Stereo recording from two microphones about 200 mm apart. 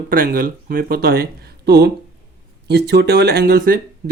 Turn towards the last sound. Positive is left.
turn(degrees=-50)  # may be behind; listen again after turning